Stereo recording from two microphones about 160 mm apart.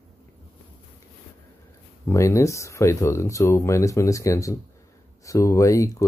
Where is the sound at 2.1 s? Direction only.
20° left (ahead or behind).